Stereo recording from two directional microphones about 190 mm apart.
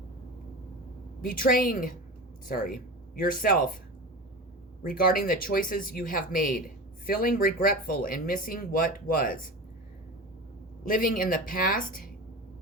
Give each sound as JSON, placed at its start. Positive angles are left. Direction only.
{"t": 1.2, "sound": "speech", "side_deg": 45}
{"t": 4.8, "sound": "speech", "side_deg": 50}
{"t": 10.8, "sound": "speech", "side_deg": 45}